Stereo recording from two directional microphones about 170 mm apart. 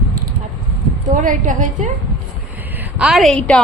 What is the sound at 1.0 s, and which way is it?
Speech, 50° right (ahead or behind).